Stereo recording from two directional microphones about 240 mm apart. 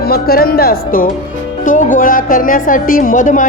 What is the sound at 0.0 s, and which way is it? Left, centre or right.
A man's voice, left.